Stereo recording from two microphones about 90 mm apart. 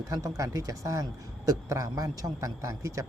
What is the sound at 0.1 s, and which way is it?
A man's voice, 40° right (ahead or behind).